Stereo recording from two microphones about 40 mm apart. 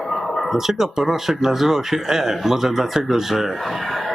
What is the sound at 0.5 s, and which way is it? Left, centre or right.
Speech, centre.